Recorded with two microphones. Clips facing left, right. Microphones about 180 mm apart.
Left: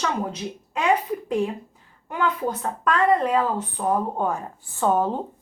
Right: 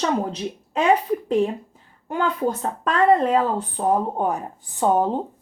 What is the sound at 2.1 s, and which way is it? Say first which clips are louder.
Speech: right 2 dB; 30° right (ahead or behind).